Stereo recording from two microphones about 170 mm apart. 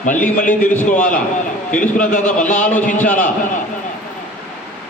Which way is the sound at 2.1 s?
50° left (ahead or behind).